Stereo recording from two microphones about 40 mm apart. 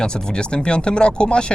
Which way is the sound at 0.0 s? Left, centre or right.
Left.